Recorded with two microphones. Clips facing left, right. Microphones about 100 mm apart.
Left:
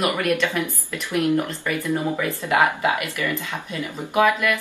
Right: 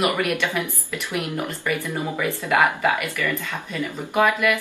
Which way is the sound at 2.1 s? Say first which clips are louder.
Right 3 dB; 10° left (ahead or behind).